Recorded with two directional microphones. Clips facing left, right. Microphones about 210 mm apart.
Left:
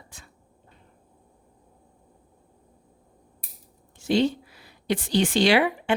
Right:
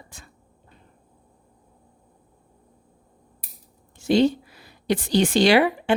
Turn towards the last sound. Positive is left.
turn(degrees=-40)  # may be behind; listen again after turning